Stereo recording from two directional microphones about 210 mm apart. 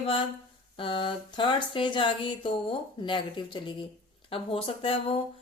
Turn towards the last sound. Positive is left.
turn(degrees=25)  # may be behind; listen again after turning